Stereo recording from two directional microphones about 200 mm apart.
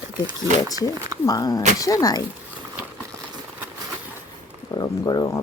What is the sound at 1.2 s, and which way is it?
Speech, 20° left (ahead or behind).